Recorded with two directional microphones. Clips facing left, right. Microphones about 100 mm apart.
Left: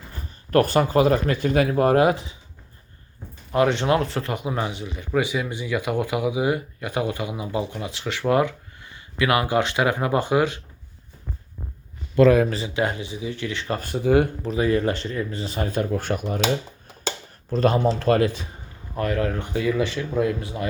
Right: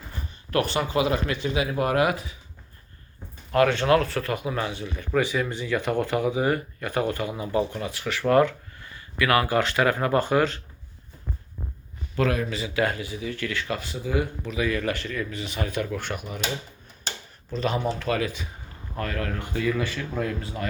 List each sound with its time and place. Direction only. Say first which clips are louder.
0.5 s speech: left 6 dB; 45° left (ahead or behind)
1.8 s speech: left 4 dB; 35° left (ahead or behind)
3.5 s speech: even; 20° left (ahead or behind)
12.5 s speech: left 1 dB; 30° left (ahead or behind)
13.7 s speech: left 8 dB; 50° left (ahead or behind); by 14.3 s 65° left (ahead or behind)
14.4 s speech: left 5 dB; 35° left (ahead or behind)
17.5 s speech: left 6 dB; 45° left (ahead or behind)
18.9 s speech: left 6 dB; 20° left (ahead or behind)